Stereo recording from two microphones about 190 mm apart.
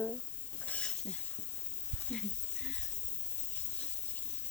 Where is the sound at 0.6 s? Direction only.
5° left (ahead or behind).